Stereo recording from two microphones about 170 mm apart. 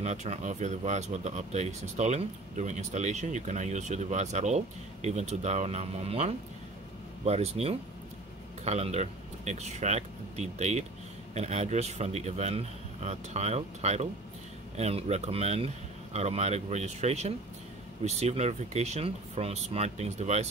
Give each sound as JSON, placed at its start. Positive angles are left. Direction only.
{"t": 0.0, "sound": "speech", "side_deg": -40}